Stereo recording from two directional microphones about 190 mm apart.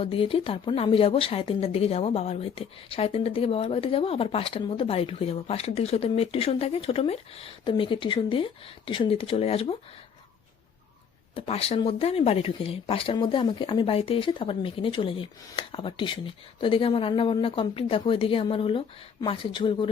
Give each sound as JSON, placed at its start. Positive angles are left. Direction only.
{"t": 0.0, "sound": "speech", "side_deg": 30}
{"t": 11.3, "sound": "speech", "side_deg": 30}